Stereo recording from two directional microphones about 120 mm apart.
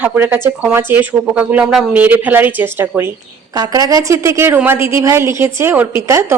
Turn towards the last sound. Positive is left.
turn(degrees=-20)  # may be behind; listen again after turning